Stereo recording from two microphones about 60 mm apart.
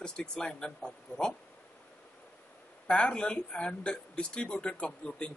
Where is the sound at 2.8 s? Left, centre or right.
Centre.